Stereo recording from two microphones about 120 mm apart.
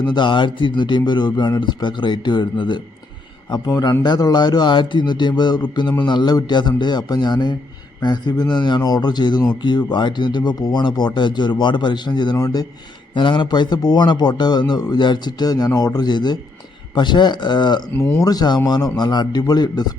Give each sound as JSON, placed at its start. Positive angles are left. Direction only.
{"t": 0.0, "sound": "a man's voice", "side_deg": 40}
{"t": 17.9, "sound": "speech", "side_deg": 15}
{"t": 18.2, "sound": "a man's voice", "side_deg": 35}